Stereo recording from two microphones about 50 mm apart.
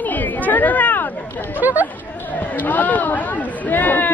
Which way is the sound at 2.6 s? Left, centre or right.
Left.